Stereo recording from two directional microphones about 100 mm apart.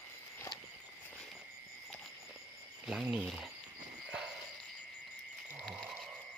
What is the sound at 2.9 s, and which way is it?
Speech, 5° right (ahead or behind).